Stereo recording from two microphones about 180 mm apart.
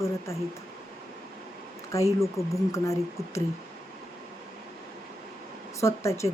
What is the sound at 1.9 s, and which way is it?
A woman's voice, 15° left (ahead or behind).